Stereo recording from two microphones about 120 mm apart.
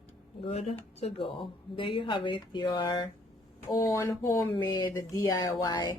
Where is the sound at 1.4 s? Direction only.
45° left (ahead or behind).